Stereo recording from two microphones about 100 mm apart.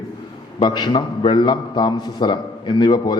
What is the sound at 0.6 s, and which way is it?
A man's voice, 45° left (ahead or behind).